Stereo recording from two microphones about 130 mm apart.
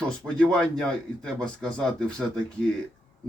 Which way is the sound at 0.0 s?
5° left (ahead or behind).